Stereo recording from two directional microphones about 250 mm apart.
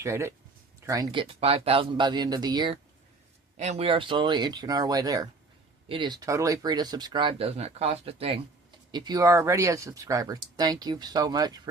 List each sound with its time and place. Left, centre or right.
0.0 s speech: centre